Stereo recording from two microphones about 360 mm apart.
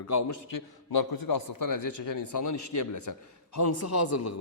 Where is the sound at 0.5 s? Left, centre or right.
Left.